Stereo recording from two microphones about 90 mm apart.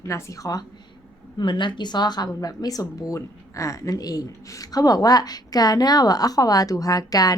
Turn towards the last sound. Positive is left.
turn(degrees=45)  # may be behind; listen again after turning